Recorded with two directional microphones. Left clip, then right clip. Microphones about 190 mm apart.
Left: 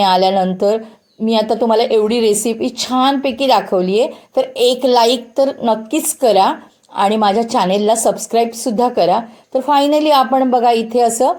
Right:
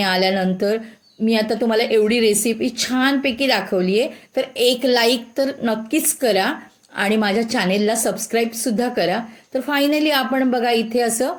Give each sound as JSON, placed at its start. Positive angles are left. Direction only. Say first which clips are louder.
{"t": 0.0, "sound": "a woman's voice", "louder": "left 6 dB", "side_deg": -5}